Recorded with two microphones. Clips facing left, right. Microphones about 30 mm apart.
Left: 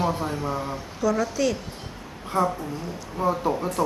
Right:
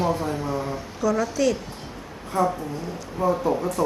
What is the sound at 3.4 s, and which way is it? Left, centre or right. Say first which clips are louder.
Speech: right 1 dB; left.